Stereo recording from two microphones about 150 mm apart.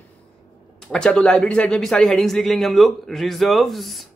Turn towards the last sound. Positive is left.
turn(degrees=0)  # may be behind; listen again after turning